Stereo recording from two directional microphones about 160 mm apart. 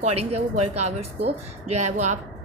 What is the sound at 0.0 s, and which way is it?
Speech, 40° right (ahead or behind).